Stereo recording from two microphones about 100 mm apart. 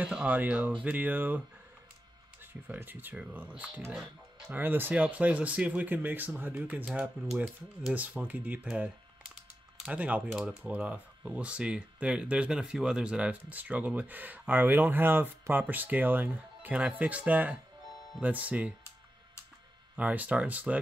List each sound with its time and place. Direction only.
0.0 s speech: 10° right (ahead or behind)
2.7 s speech: 20° right (ahead or behind)
6.9 s speech: 5° right (ahead or behind)
7.9 s speech: 15° right (ahead or behind)
20.0 s speech: 15° right (ahead or behind)